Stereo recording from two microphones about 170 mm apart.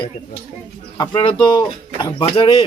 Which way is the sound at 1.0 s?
25° left (ahead or behind).